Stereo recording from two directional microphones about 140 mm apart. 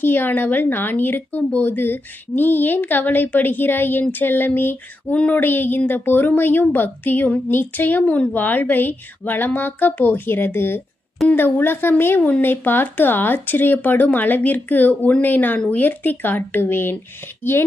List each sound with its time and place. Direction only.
0.0 s speech: 15° left (ahead or behind)